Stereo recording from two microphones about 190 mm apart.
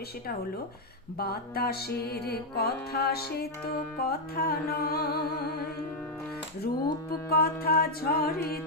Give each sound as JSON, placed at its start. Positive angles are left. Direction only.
{"t": 1.2, "sound": "music", "side_deg": 55}
{"t": 7.3, "sound": "music", "side_deg": 55}